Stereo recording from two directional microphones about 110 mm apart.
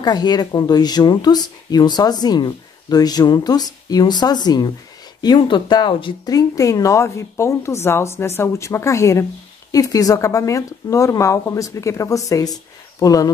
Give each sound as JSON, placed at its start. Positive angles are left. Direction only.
{"t": 0.0, "sound": "speech", "side_deg": 40}
{"t": 6.2, "sound": "speech", "side_deg": 30}